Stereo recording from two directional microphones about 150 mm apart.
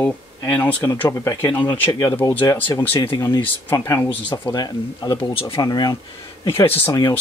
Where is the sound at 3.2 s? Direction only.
30° left (ahead or behind).